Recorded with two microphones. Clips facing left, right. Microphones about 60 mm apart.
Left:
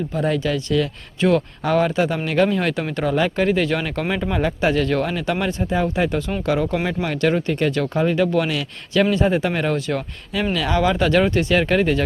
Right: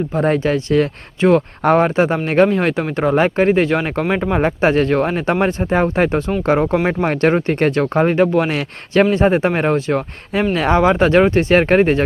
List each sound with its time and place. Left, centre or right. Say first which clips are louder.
0.1 s speech: right 5 dB; right